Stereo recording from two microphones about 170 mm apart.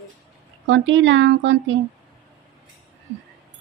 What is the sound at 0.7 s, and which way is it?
Speech, 90° right.